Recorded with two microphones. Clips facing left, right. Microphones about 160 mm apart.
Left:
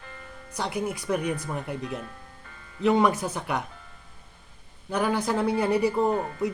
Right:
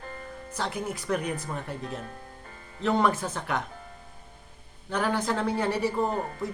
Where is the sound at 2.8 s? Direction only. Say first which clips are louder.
Left 3 dB; 10° left (ahead or behind).